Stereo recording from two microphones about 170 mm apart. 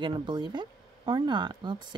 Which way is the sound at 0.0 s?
25° right (ahead or behind).